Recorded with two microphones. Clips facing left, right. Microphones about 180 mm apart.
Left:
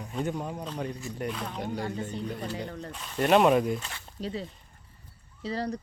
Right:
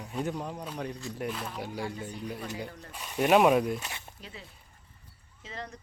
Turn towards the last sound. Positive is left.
turn(degrees=35)  # may be behind; listen again after turning